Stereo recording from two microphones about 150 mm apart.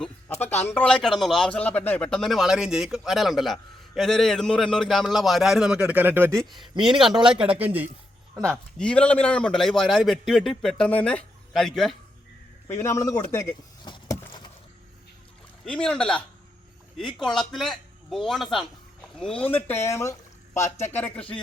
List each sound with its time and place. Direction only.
0.4 s speech: 15° left (ahead or behind); by 6.4 s 15° right (ahead or behind)
6.8 s speech: 5° right (ahead or behind)
7.1 s speech: 30° right (ahead or behind)
7.3 s speech: 10° right (ahead or behind)
8.4 s speech: 5° left (ahead or behind)
12.6 s a man's voice: 20° left (ahead or behind)
13.8 s a sound: 30° left (ahead or behind)
15.6 s speech: 5° left (ahead or behind)
19.5 s speech: 15° left (ahead or behind)